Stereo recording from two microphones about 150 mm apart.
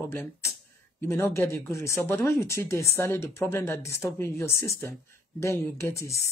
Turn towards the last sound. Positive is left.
turn(degrees=20)  # may be behind; listen again after turning